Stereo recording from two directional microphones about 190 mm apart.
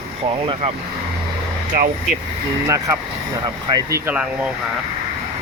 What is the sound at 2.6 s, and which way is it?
Speech, 15° right (ahead or behind).